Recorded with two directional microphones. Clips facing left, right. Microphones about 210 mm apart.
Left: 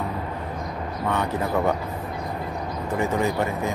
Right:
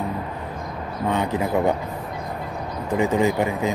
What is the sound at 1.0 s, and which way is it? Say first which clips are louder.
Speech: right 3 dB; 15° right (ahead or behind).